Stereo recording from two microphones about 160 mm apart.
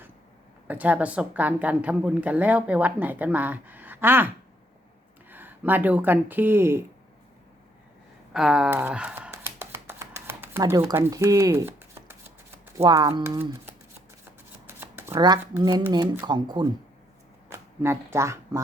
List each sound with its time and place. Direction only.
0.7 s a woman's voice: 10° right (ahead or behind)
5.3 s speech: 10° right (ahead or behind)
8.3 s speech: 5° right (ahead or behind)
9.3 s a sound: 15° right (ahead or behind)
12.7 s speech: 20° right (ahead or behind)
14.7 s shuffling cards: 15° right (ahead or behind)
15.9 s speech: 25° right (ahead or behind)
17.8 s a woman's voice: 15° right (ahead or behind)